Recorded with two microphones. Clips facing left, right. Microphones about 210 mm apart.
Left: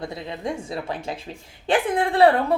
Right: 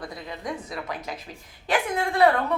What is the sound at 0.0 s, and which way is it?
A woman's voice, 25° left (ahead or behind).